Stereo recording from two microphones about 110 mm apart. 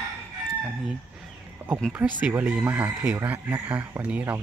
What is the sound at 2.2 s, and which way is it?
Speech, 10° right (ahead or behind).